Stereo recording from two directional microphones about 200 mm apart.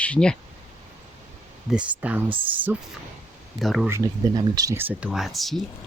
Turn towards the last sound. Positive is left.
turn(degrees=0)  # may be behind; listen again after turning